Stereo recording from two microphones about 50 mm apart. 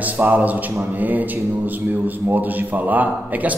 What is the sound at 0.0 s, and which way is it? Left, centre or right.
A man's voice, right.